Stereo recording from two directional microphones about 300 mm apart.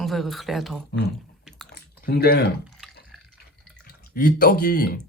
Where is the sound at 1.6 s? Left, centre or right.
Left.